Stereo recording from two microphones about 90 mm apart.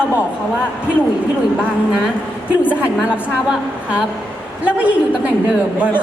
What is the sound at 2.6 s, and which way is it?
Speech, 15° right (ahead or behind).